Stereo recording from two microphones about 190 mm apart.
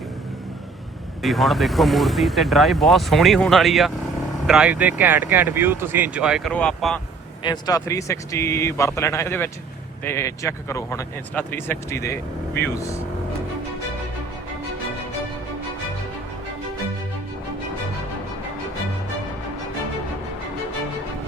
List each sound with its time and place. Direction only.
1.2 s speech: centre (ahead or behind)
7.4 s speech: 20° left (ahead or behind)